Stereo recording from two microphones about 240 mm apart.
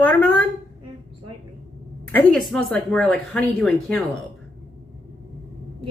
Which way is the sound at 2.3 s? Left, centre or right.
Centre.